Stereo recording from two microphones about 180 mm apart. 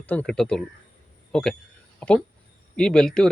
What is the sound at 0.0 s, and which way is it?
Speech, 10° left (ahead or behind).